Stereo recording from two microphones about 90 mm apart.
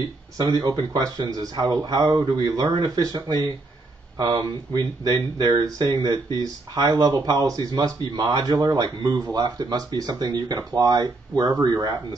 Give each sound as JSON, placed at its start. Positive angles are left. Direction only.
{"t": 0.4, "sound": "speech", "side_deg": -50}